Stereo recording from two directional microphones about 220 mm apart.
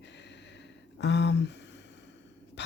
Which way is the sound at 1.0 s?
50° left (ahead or behind).